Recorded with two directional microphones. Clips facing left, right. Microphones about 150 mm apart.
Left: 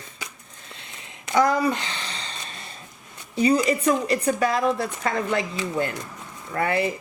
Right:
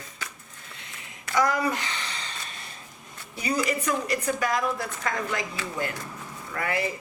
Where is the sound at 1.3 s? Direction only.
25° left (ahead or behind).